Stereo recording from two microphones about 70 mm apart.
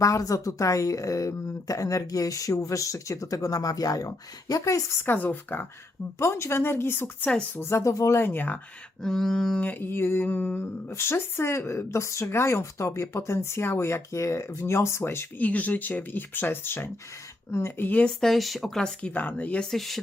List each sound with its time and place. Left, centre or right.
0.0 s speech: left
5.0 s speech: left
6.1 s speech: left
7.8 s speech: left
9.0 s speech: centre
9.6 s speech: left
15.4 s speech: left
18.2 s speech: centre
18.8 s speech: centre
19.5 s speech: centre